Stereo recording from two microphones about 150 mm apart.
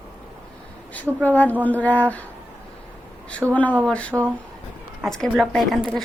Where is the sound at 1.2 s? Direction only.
10° left (ahead or behind).